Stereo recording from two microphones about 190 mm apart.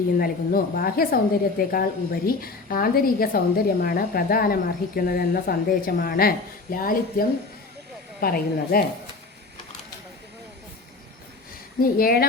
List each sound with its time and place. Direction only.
0.2 s a woman's voice: 50° left (ahead or behind)
11.8 s a woman's voice: 50° left (ahead or behind)